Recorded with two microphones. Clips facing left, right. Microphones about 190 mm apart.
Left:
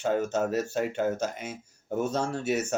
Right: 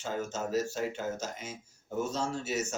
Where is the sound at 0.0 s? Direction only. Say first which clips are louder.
Left 8 dB; 60° left (ahead or behind).